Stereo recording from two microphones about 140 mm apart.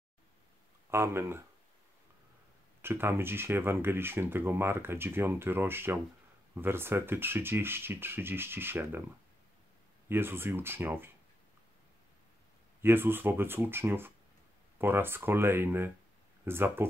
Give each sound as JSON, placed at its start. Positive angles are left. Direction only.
{"t": 0.8, "sound": "speech", "side_deg": -20}
{"t": 2.8, "sound": "speech", "side_deg": -15}
{"t": 10.0, "sound": "speech", "side_deg": -15}
{"t": 12.8, "sound": "speech", "side_deg": -15}